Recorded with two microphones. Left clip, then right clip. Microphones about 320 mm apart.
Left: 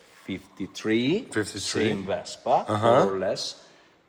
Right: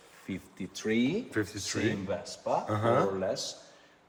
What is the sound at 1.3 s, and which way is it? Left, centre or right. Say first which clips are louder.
Speech: left 5 dB; centre.